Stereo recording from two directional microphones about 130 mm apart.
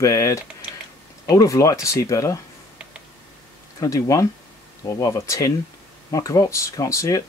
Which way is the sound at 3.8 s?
25° left (ahead or behind).